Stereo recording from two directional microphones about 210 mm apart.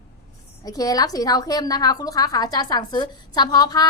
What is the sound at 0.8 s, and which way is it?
A woman's voice, 15° left (ahead or behind).